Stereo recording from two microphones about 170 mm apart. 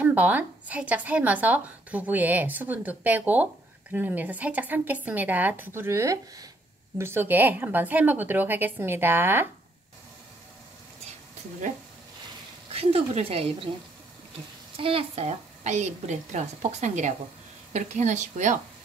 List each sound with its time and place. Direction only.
0.0 s a woman's voice: 10° right (ahead or behind)
12.7 s speech: 35° right (ahead or behind)
14.8 s a woman's voice: 35° right (ahead or behind)